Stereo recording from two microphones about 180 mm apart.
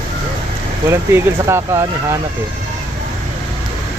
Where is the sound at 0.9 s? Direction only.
15° right (ahead or behind).